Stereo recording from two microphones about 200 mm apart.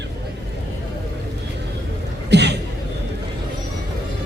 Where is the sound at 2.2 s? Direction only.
60° right (ahead or behind).